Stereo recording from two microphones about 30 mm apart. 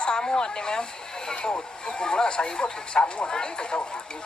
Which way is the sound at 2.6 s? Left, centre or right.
Left.